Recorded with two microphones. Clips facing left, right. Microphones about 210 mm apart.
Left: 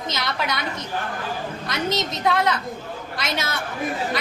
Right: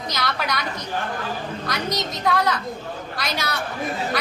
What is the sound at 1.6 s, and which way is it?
A woman's voice, 25° left (ahead or behind).